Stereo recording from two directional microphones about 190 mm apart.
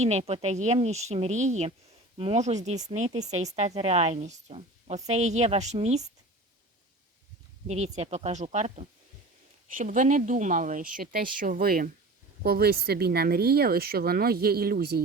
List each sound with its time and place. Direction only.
0.0 s a woman's voice: 35° right (ahead or behind)
3.1 s a woman's voice: 20° right (ahead or behind)
3.3 s a woman's voice: 35° right (ahead or behind)
7.7 s a woman's voice: 35° right (ahead or behind); by 15.0 s 55° right (ahead or behind)